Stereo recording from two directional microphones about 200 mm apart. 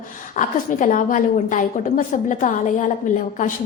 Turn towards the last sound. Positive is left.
turn(degrees=40)  # may be behind; listen again after turning